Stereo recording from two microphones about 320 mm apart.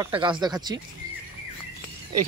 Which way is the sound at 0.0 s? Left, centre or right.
Centre.